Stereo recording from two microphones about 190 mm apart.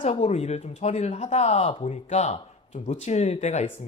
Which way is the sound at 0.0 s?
35° left (ahead or behind).